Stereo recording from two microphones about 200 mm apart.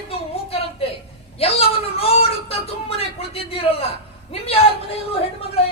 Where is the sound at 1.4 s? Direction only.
30° left (ahead or behind).